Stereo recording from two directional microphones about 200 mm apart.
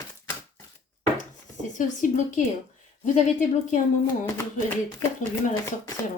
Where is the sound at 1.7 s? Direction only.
40° left (ahead or behind).